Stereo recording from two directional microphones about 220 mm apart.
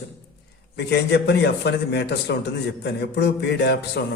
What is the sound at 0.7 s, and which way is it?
Speech, 50° left (ahead or behind).